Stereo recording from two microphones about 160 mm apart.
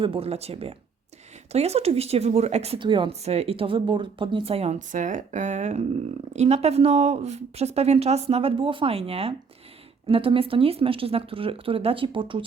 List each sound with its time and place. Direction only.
0.0 s a woman's voice: 35° right (ahead or behind)